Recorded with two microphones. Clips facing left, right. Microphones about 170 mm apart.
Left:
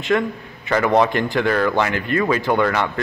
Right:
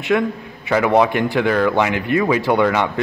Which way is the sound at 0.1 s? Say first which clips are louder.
Right 2 dB; 5° right (ahead or behind).